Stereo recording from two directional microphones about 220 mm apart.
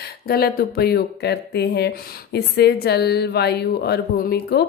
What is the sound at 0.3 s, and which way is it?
Speech, 45° left (ahead or behind).